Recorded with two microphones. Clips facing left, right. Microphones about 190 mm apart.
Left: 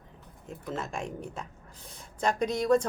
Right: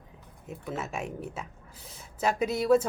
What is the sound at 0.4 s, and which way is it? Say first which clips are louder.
A woman's voice: even; 5° right (ahead or behind).